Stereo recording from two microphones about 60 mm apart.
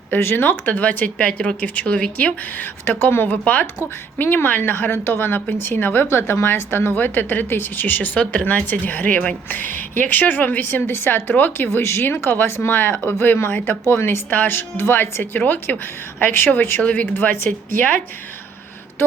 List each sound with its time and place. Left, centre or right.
0.1 s speech: left
1.3 s speech: centre
1.6 s speech: left
2.8 s a woman's voice: left
12.0 s a woman's voice: left
16.8 s a woman's voice: left